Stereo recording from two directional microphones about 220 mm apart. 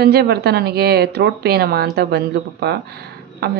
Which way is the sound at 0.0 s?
45° right (ahead or behind).